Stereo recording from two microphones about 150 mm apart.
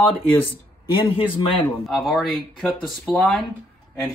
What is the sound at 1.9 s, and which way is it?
Speech, centre (ahead or behind).